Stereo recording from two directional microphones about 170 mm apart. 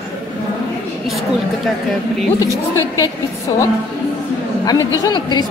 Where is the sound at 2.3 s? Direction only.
20° left (ahead or behind).